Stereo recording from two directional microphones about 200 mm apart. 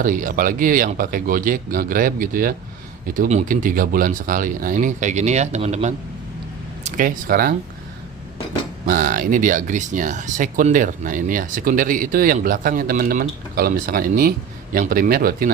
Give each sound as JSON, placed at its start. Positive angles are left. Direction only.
{"t": 0.0, "sound": "speech", "side_deg": -45}
{"t": 8.9, "sound": "speech", "side_deg": -45}